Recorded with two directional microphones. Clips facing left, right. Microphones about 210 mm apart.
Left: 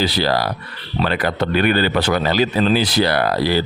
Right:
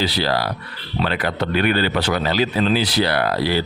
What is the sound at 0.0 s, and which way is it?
Speech, 45° left (ahead or behind).